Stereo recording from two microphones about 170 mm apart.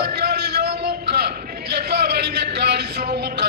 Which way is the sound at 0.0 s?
70° right (ahead or behind).